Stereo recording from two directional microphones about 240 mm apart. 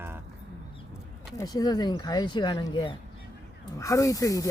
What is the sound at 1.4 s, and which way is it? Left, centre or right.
Speech, centre.